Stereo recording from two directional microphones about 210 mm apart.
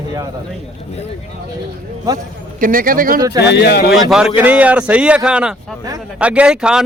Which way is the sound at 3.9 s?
Centre (ahead or behind).